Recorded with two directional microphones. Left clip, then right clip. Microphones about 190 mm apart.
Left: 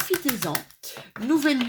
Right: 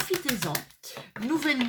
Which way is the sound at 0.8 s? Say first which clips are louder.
Left 7 dB; 40° left (ahead or behind).